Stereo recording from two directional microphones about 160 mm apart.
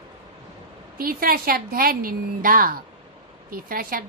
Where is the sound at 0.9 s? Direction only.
65° right (ahead or behind).